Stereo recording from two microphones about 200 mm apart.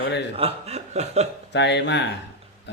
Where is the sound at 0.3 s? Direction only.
30° right (ahead or behind).